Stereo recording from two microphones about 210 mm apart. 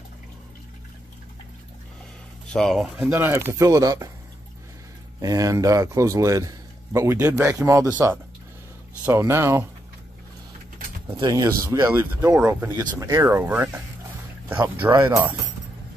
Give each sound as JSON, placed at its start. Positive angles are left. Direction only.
{"t": 2.5, "sound": "a man's voice", "side_deg": 0}
{"t": 5.2, "sound": "a man's voice", "side_deg": -15}
{"t": 11.1, "sound": "a man's voice", "side_deg": -20}
{"t": 14.9, "sound": "a man's voice", "side_deg": -10}